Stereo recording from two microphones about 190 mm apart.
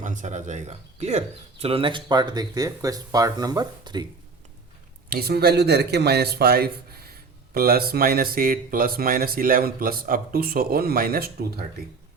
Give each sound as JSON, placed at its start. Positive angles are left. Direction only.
{"t": 0.0, "sound": "speech", "side_deg": -40}
{"t": 5.0, "sound": "a man's voice", "side_deg": -50}